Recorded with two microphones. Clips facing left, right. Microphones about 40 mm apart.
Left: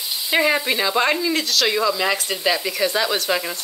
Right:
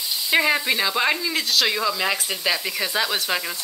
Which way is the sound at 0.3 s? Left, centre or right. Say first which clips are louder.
Left 1 dB; centre.